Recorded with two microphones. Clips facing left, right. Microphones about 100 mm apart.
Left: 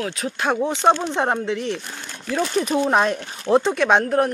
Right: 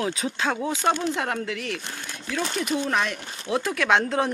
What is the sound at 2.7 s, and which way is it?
Speech, 40° left (ahead or behind).